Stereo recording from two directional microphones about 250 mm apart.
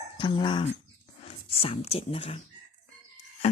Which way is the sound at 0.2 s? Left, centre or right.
Centre.